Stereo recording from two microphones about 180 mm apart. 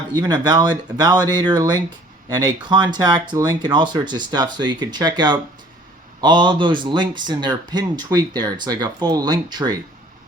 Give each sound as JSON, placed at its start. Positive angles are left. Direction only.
{"t": 0.1, "sound": "speech", "side_deg": -25}